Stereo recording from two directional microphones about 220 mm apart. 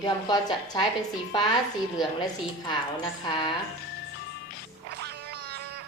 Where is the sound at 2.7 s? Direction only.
20° left (ahead or behind).